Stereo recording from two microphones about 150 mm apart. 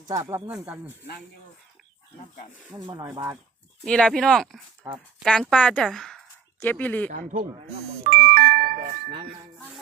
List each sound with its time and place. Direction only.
0.1 s speech: 20° right (ahead or behind)
2.7 s speech: 25° right (ahead or behind)
3.8 s speech: 5° left (ahead or behind)
7.1 s speech: 60° right (ahead or behind)
8.0 s music: 80° right; by 9.1 s 60° right (ahead or behind)